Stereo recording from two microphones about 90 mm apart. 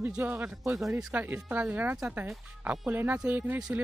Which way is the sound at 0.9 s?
20° right (ahead or behind).